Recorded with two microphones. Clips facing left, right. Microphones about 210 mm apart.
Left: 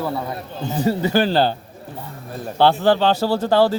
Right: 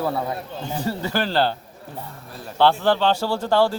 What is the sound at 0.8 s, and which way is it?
Speech, 15° left (ahead or behind).